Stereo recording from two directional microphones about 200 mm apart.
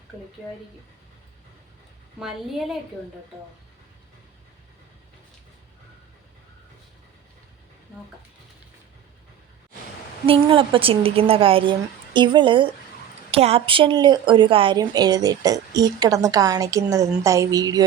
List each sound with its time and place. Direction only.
2.1 s a woman's voice: centre (ahead or behind)
10.2 s a woman's voice: 25° right (ahead or behind)